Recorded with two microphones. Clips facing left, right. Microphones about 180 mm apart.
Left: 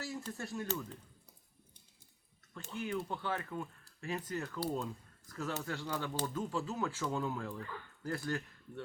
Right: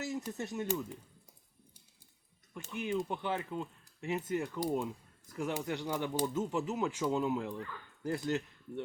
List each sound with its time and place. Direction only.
0.0 s speech: 20° right (ahead or behind)
2.5 s speech: 15° right (ahead or behind)